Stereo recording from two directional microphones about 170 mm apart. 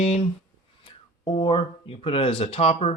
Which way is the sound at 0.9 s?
25° left (ahead or behind).